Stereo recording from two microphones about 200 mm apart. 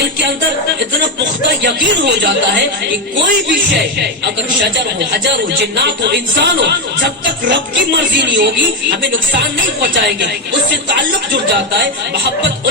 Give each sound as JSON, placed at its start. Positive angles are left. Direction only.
{"t": 5.7, "sound": "a woman's voice", "side_deg": -55}